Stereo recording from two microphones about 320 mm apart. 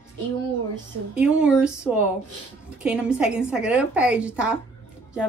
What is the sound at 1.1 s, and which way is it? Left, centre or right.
A woman's voice, centre.